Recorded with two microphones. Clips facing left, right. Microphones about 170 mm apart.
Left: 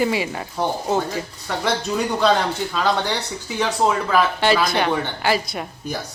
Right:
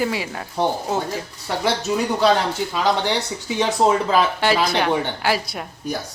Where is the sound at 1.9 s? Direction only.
Centre (ahead or behind).